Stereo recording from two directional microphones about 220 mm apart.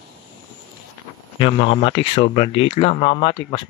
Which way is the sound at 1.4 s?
25° left (ahead or behind).